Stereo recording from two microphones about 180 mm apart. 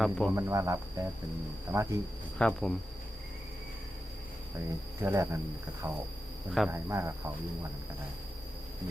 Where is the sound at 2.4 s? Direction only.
5° left (ahead or behind).